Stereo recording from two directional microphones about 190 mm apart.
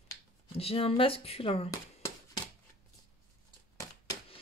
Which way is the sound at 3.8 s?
20° left (ahead or behind).